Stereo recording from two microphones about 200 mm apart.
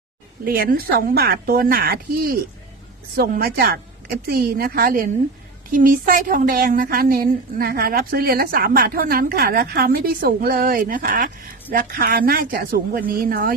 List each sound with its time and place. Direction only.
0.4 s a woman's voice: 50° right (ahead or behind)